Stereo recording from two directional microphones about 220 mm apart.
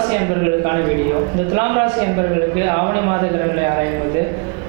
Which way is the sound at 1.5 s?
20° right (ahead or behind).